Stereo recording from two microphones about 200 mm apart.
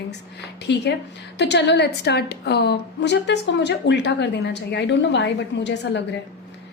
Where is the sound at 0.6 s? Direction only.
60° left (ahead or behind).